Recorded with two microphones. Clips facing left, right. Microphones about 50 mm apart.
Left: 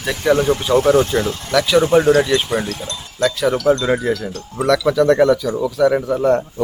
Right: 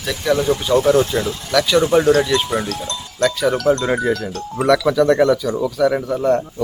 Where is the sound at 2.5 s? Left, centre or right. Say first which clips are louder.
Left 1 dB; left.